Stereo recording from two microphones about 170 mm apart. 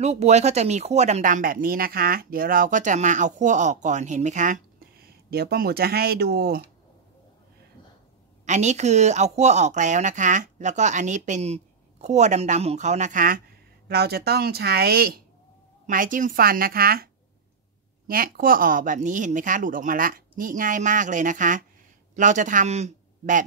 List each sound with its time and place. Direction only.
0.0 s speech: 40° right (ahead or behind); by 6.6 s 65° right (ahead or behind)
8.5 s speech: 45° right (ahead or behind)
13.8 s a woman's voice: 70° right (ahead or behind); by 23.4 s 45° right (ahead or behind)